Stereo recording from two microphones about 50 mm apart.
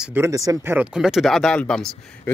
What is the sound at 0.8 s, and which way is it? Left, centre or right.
Speech, centre.